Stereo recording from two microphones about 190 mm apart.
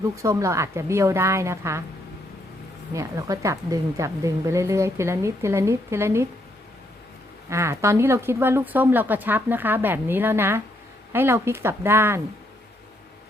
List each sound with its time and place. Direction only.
0.2 s a woman's voice: 15° right (ahead or behind)
2.9 s a woman's voice: 15° right (ahead or behind)
7.5 s a woman's voice: 15° right (ahead or behind)